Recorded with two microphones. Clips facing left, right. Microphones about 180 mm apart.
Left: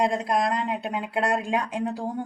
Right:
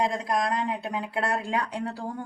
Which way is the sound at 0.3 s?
25° left (ahead or behind).